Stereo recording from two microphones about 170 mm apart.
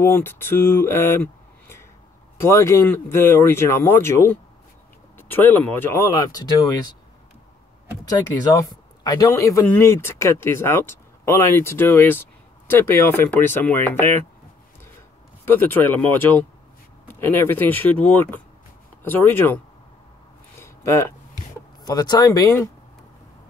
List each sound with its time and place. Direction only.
0.0 s speech: 15° left (ahead or behind)
8.0 s speech: 20° left (ahead or behind)
15.4 s speech: 10° left (ahead or behind)
20.5 s a sound: 15° left (ahead or behind)
21.8 s speech: 25° left (ahead or behind)